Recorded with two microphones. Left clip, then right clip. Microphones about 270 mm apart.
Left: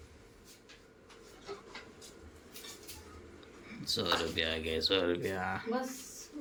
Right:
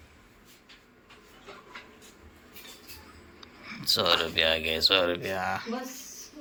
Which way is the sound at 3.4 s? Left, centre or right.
Centre.